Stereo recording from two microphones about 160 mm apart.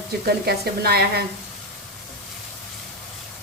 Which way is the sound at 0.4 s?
85° right.